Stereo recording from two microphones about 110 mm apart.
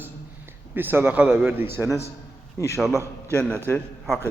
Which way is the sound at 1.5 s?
20° right (ahead or behind).